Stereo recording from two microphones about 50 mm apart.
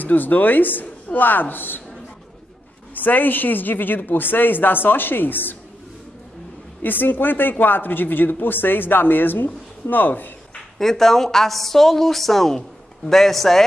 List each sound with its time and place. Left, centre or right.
0.0 s speech: left
2.9 s speech: left
6.8 s speech: left
10.5 s a woman's voice: centre